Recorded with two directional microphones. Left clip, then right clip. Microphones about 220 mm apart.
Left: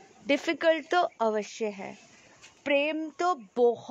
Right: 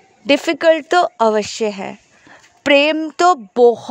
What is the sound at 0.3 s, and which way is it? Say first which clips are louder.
A woman's voice: right 12 dB; 35° right (ahead or behind).